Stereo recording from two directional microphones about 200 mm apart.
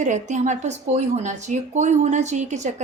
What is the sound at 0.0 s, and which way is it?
A woman's voice, 35° right (ahead or behind).